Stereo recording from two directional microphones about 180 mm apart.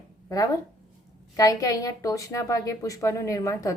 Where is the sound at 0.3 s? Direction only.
20° left (ahead or behind).